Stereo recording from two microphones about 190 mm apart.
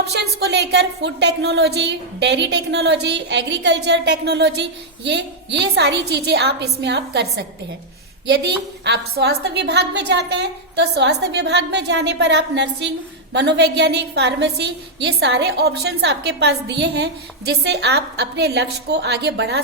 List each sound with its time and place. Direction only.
0.1 s a woman's voice: 60° right (ahead or behind)